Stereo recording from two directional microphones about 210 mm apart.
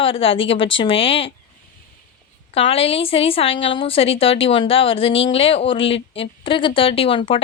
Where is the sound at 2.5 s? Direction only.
30° left (ahead or behind).